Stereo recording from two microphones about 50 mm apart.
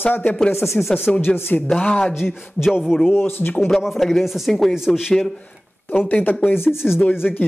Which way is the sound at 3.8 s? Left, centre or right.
Centre.